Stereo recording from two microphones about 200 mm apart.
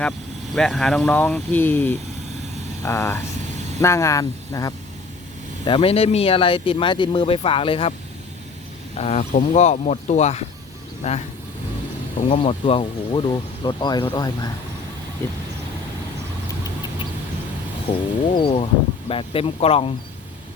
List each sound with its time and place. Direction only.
0.5 s speech: 5° left (ahead or behind)
5.6 s speech: 25° left (ahead or behind)
9.0 s speech: 35° left (ahead or behind)
12.2 s speech: 30° left (ahead or behind)
17.9 s speech: 25° left (ahead or behind)